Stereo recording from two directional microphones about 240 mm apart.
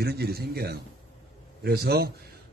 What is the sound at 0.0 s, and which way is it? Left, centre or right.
A man's voice, right.